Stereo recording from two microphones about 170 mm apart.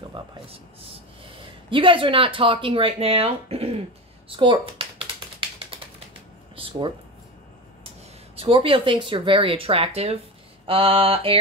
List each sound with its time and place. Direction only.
0.1 s speech: 30° right (ahead or behind)
4.3 s typing: 30° right (ahead or behind)
6.5 s a sound: 30° right (ahead or behind)
8.4 s speech: 30° right (ahead or behind)